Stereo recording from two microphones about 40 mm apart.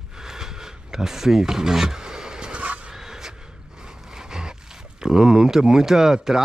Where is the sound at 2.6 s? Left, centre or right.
Right.